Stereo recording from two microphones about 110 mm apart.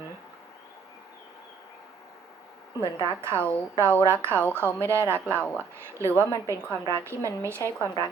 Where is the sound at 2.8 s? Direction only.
25° right (ahead or behind).